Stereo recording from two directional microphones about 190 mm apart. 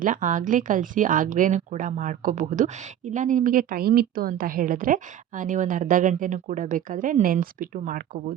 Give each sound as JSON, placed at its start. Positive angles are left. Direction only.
{"t": 0.0, "sound": "speech", "side_deg": -45}